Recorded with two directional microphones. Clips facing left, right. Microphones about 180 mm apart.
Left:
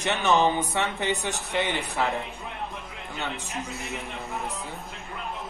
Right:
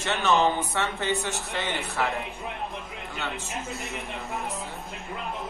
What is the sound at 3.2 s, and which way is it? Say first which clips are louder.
Speech: even; 15° left (ahead or behind).